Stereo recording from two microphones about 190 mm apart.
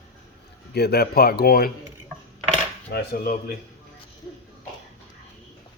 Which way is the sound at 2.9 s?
55° left (ahead or behind).